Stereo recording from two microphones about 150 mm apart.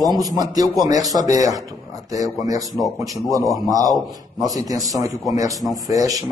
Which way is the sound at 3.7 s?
25° right (ahead or behind).